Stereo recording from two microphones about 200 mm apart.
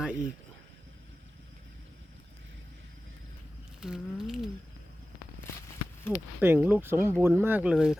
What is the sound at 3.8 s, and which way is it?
Speech, centre (ahead or behind).